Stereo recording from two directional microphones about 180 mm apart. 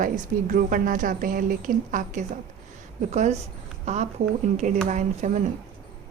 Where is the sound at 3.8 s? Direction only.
40° right (ahead or behind).